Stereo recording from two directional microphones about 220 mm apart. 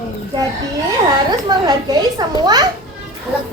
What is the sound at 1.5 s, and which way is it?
Speech, 15° right (ahead or behind).